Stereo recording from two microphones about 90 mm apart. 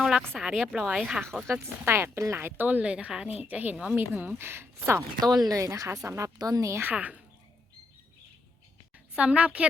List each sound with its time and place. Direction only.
0.0 s a sound: centre (ahead or behind)
0.3 s speech: centre (ahead or behind)
1.6 s a woman's voice: 25° right (ahead or behind)
5.5 s speech: 40° right (ahead or behind)
6.8 s a woman's voice: 15° right (ahead or behind)
9.1 s a woman's voice: 10° right (ahead or behind)